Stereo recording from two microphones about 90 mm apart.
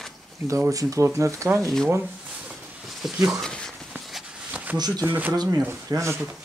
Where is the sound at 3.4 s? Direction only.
5° left (ahead or behind).